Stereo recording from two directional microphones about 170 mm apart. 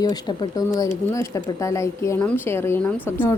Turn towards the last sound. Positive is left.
turn(degrees=10)  # may be behind; listen again after turning